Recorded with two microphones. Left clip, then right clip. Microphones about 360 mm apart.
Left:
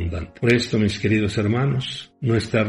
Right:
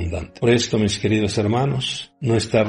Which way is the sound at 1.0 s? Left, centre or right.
Right.